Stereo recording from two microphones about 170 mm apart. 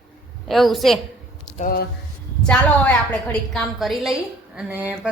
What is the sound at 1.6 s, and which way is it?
Speech, 70° left (ahead or behind).